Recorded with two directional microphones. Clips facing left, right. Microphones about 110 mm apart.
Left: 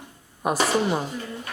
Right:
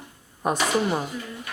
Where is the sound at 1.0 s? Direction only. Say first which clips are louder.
Left 1 dB; 30° left (ahead or behind).